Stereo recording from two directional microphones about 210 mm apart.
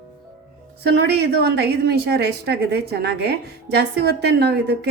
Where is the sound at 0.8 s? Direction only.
55° right (ahead or behind).